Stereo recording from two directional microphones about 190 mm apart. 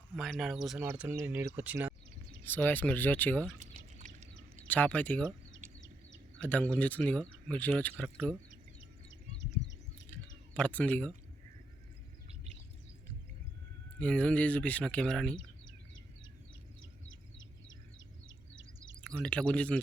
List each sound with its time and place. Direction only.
0.2 s speech: centre (ahead or behind)
2.4 s speech: 10° left (ahead or behind)
3.6 s a sound: 40° right (ahead or behind)
4.7 s speech: 5° left (ahead or behind)
6.4 s speech: 5° left (ahead or behind)
10.5 s speech: 5° left (ahead or behind)
14.0 s speech: 5° left (ahead or behind)
17.1 s a sound: 85° left
19.0 s speech: 5° left (ahead or behind)